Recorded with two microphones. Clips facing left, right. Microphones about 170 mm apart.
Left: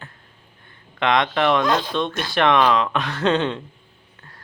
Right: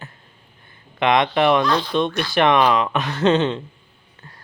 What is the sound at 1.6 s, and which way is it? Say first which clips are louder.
Speech: even; 45° left (ahead or behind).